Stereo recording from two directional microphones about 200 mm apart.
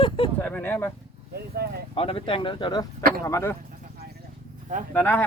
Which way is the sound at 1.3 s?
50° right (ahead or behind).